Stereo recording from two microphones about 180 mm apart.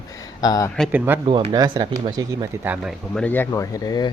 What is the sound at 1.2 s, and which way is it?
Speech, 30° right (ahead or behind).